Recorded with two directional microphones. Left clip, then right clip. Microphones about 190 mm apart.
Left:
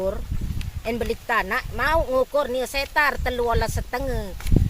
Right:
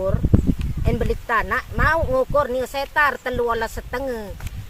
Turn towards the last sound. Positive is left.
turn(degrees=15)  # may be behind; listen again after turning